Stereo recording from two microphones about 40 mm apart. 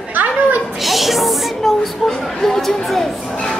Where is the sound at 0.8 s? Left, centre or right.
Centre.